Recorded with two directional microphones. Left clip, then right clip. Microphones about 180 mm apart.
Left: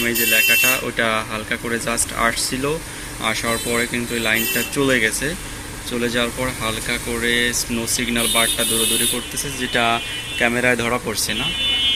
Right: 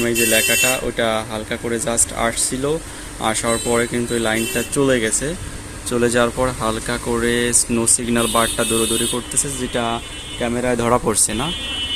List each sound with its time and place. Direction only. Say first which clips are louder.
0.0 s speech: even; 15° right (ahead or behind)
6.0 s speech: right 5 dB; 30° right (ahead or behind)
9.7 s speech: left 5 dB; 15° right (ahead or behind)
10.8 s speech: right 4 dB; 25° right (ahead or behind)